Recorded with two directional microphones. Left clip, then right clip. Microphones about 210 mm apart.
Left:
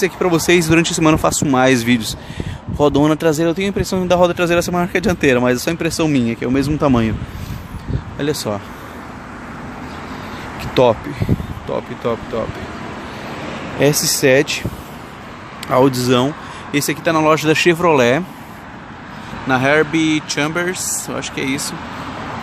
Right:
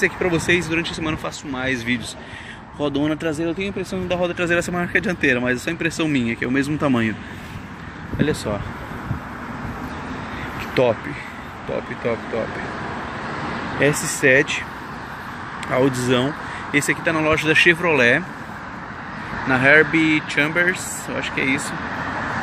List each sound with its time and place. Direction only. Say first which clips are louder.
0.0 s speech: left 4 dB; 20° left (ahead or behind)
8.2 s speech: left 2 dB; 25° left (ahead or behind)
10.7 s speech: left 5 dB; 25° left (ahead or behind)
13.7 s speech: left 5 dB; 20° left (ahead or behind)
15.7 s speech: left 5 dB; 15° left (ahead or behind)
19.5 s speech: even; 15° left (ahead or behind)